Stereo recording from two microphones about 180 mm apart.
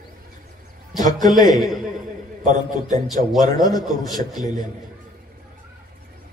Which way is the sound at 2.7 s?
20° left (ahead or behind).